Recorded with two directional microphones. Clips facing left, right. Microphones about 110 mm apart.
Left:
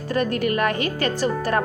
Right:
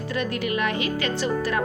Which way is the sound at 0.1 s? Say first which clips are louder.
Left 5 dB; 45° left (ahead or behind).